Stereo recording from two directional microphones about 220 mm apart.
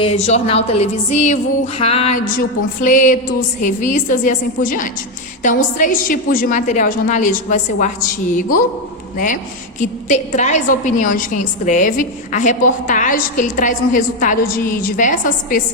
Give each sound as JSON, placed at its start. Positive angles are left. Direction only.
{"t": 0.0, "sound": "a woman's voice", "side_deg": 30}